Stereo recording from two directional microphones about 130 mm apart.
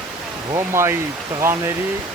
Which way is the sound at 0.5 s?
20° right (ahead or behind).